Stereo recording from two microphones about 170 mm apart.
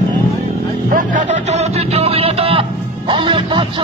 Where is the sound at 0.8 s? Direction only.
50° right (ahead or behind); by 2.6 s 35° right (ahead or behind).